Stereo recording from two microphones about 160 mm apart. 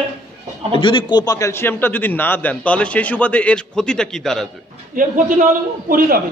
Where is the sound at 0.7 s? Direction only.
30° left (ahead or behind); by 4.4 s centre (ahead or behind).